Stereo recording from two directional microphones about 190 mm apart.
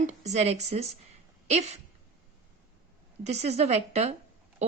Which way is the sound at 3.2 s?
35° right (ahead or behind).